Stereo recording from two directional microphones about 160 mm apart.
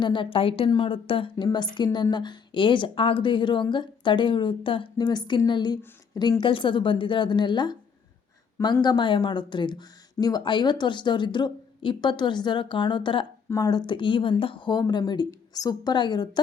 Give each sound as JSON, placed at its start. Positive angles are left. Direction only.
{"t": 0.0, "sound": "a woman's voice", "side_deg": 30}